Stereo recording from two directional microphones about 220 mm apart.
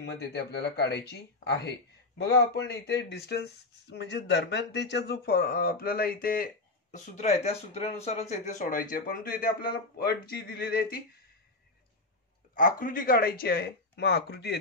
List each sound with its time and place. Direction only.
0.0 s speech: 50° left (ahead or behind)
12.5 s speech: 40° left (ahead or behind)